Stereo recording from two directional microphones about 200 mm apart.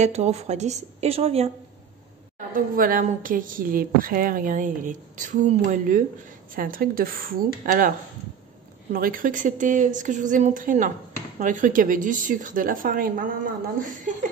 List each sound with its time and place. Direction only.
0.0 s a woman's voice: 35° right (ahead or behind)
2.3 s a woman's voice: 45° right (ahead or behind)
8.9 s a woman's voice: 45° right (ahead or behind)